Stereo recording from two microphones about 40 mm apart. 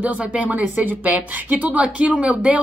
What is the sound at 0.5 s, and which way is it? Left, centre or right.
A woman's voice, right.